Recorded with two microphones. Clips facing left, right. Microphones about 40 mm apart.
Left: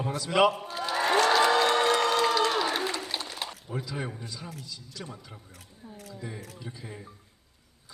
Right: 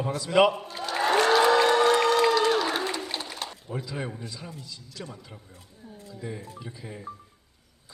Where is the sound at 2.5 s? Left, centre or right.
Centre.